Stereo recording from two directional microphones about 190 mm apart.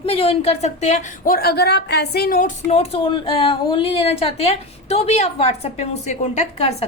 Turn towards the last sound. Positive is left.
turn(degrees=35)  # may be behind; listen again after turning